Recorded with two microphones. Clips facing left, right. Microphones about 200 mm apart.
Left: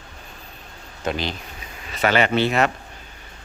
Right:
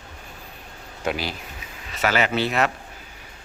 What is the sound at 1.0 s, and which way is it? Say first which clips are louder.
Speech: left 1 dB; 10° right (ahead or behind).